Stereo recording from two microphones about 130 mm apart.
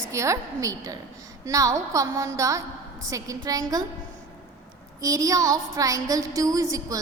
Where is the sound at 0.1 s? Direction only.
25° right (ahead or behind).